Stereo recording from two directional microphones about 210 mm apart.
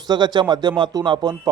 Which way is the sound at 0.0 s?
20° right (ahead or behind).